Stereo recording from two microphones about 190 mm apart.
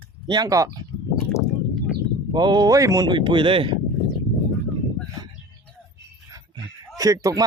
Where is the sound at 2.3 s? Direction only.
25° right (ahead or behind).